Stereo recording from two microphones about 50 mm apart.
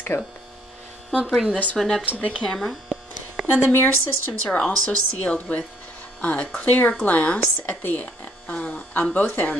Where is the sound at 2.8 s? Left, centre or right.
Centre.